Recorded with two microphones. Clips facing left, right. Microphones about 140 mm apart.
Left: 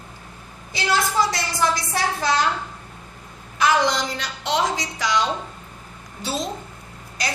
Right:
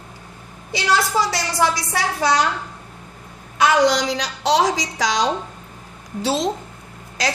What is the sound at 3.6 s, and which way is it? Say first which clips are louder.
A woman's voice: right 4 dB; 90° right.